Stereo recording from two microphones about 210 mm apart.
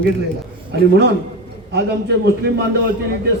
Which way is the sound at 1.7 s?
50° right (ahead or behind).